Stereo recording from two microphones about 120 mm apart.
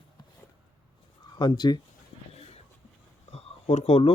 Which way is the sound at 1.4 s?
35° left (ahead or behind).